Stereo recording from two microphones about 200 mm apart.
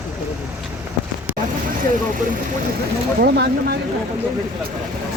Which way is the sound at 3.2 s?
50° right (ahead or behind).